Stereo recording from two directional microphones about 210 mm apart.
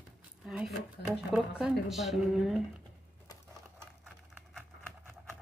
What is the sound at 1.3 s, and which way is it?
Speech, centre (ahead or behind).